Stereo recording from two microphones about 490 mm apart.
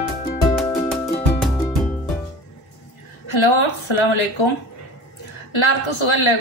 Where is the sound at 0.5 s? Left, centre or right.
Centre.